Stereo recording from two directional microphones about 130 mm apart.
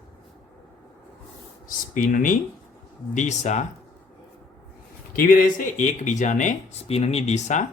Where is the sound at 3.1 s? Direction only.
70° left (ahead or behind).